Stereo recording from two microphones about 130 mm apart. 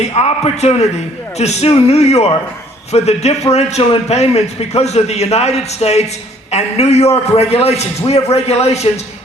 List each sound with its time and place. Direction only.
0.0 s a man's voice: 55° left (ahead or behind)